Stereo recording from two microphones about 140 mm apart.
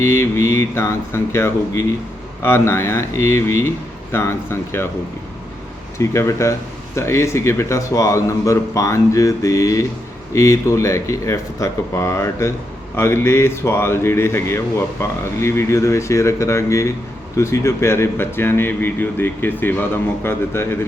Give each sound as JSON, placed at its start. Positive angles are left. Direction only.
{"t": 0.0, "sound": "speech", "side_deg": 20}
{"t": 6.0, "sound": "speech", "side_deg": 20}